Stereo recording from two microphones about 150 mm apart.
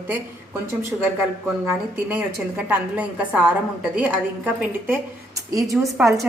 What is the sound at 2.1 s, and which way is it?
A woman's voice, 10° right (ahead or behind).